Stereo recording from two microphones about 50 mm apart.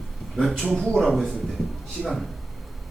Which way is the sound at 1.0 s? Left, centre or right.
Centre.